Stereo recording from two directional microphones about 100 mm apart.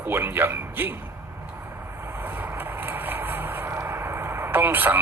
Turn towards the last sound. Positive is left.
turn(degrees=-20)  # may be behind; listen again after turning